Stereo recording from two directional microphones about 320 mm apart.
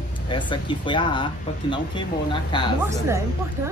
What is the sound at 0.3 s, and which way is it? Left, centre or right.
Speech, centre.